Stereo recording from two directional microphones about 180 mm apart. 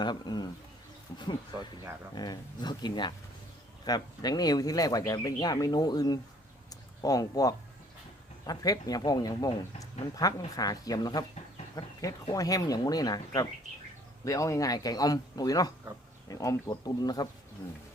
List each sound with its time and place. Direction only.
0.0 s speech: 25° left (ahead or behind)
2.1 s speech: 20° left (ahead or behind)
6.7 s a sound: 20° left (ahead or behind)
8.4 s speech: 20° left (ahead or behind)